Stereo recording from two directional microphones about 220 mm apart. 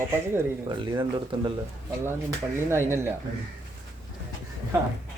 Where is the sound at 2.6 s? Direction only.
10° right (ahead or behind).